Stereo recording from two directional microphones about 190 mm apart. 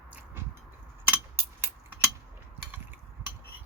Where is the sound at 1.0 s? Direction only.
10° right (ahead or behind).